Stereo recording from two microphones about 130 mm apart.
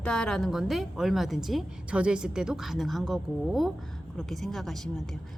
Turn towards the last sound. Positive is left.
turn(degrees=0)  # may be behind; listen again after turning